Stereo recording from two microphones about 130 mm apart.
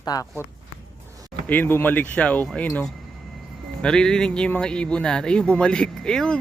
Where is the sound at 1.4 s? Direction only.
15° left (ahead or behind).